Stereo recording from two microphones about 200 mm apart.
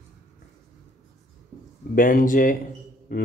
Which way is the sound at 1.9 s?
45° left (ahead or behind).